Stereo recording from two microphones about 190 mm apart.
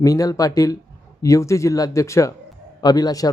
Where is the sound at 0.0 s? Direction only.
20° left (ahead or behind).